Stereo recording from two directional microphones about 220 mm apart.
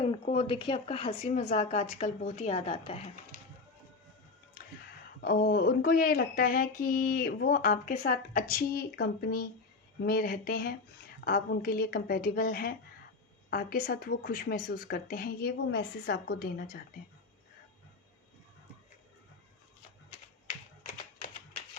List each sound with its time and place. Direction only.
0.0 s speech: 25° left (ahead or behind)
5.2 s a sound: 45° left (ahead or behind)
10.0 s a woman's voice: 45° left (ahead or behind)